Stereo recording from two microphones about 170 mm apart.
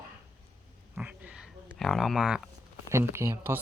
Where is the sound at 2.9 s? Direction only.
15° right (ahead or behind).